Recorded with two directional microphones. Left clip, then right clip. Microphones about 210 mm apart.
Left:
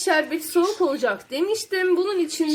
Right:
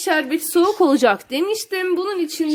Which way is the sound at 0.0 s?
40° right (ahead or behind).